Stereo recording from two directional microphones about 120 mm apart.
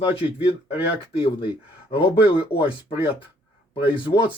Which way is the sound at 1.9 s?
45° left (ahead or behind).